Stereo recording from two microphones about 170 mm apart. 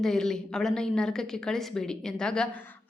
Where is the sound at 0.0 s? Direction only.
5° left (ahead or behind).